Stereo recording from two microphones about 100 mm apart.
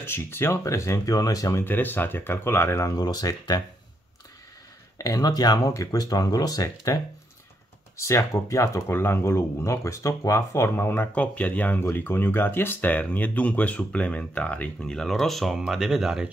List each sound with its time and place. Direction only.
0.0 s speech: 25° left (ahead or behind)
1.6 s speech: 20° left (ahead or behind); by 3.6 s 40° left (ahead or behind)
4.9 s speech: 35° left (ahead or behind)
8.0 s speech: 30° left (ahead or behind); by 16.3 s 5° right (ahead or behind)